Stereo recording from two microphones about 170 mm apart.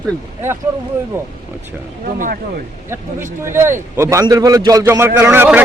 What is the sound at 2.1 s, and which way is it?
Speech, 50° right (ahead or behind).